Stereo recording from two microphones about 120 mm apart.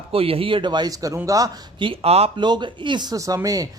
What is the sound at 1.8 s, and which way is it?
Speech, 50° right (ahead or behind).